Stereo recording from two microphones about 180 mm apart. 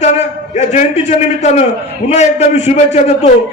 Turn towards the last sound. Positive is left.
turn(degrees=40)  # may be behind; listen again after turning